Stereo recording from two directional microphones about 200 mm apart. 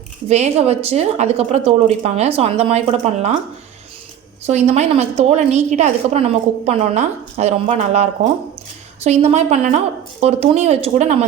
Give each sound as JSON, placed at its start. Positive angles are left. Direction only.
{"t": 0.3, "sound": "a woman's voice", "side_deg": -35}
{"t": 4.4, "sound": "a woman's voice", "side_deg": -35}